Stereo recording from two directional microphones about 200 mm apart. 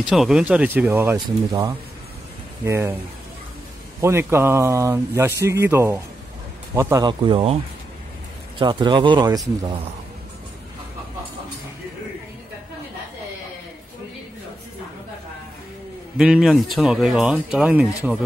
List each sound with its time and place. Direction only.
0.1 s speech: 5° right (ahead or behind)
4.0 s speech: 10° right (ahead or behind)
8.5 s speech: 20° right (ahead or behind)
16.2 s speech: 5° right (ahead or behind)